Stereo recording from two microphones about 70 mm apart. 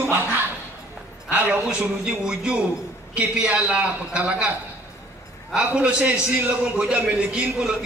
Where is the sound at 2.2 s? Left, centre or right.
Centre.